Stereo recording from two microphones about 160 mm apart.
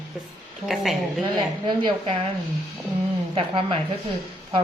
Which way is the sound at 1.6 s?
30° right (ahead or behind).